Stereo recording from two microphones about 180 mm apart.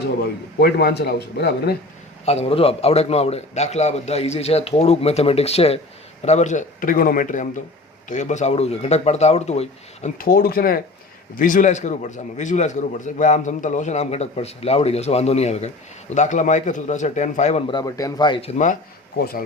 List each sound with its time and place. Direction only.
0.6 s speech: 60° left (ahead or behind)
2.2 s a man's voice: 35° left (ahead or behind)
10.2 s a man's voice: 55° left (ahead or behind)
17.7 s a man's voice: 20° left (ahead or behind); by 18.8 s 40° left (ahead or behind)
19.2 s speech: 55° left (ahead or behind)